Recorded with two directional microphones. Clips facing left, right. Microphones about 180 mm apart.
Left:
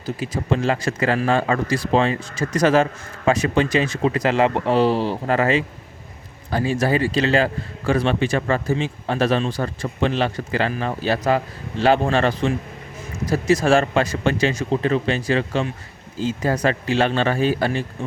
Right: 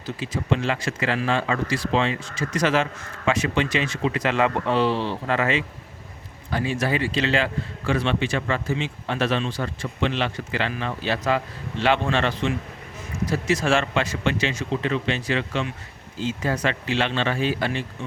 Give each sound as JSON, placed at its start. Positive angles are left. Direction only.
{"t": 0.0, "sound": "a man's voice", "side_deg": 40}